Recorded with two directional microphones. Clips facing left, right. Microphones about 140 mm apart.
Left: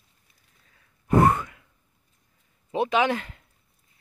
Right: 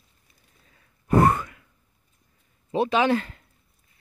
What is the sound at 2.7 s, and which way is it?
Speech, 15° left (ahead or behind).